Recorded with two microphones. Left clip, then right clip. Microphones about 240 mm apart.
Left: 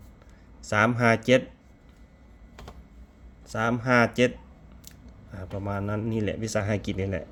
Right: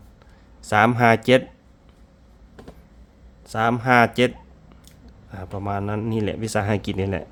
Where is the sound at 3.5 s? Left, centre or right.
Centre.